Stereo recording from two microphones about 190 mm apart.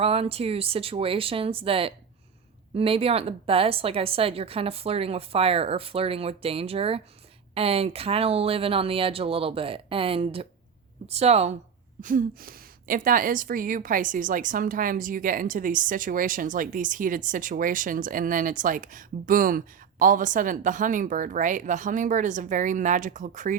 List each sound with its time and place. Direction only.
0.0 s a woman's voice: 30° right (ahead or behind)
12.0 s a woman's voice: 45° right (ahead or behind)